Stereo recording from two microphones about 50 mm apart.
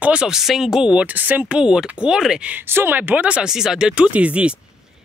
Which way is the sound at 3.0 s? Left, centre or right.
Right.